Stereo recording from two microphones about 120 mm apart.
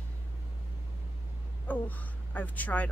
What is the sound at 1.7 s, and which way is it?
Speech, 15° left (ahead or behind).